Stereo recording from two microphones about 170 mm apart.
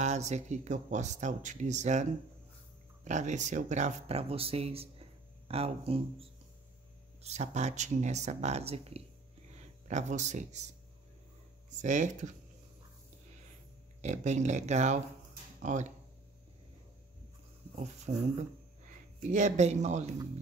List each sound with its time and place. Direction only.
0.0 s speech: 40° right (ahead or behind)
7.2 s speech: 40° right (ahead or behind)
11.8 s speech: 45° right (ahead or behind)
14.0 s speech: 45° right (ahead or behind)
18.1 s speech: 40° right (ahead or behind)